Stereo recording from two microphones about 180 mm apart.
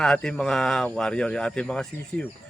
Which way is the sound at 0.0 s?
5° left (ahead or behind).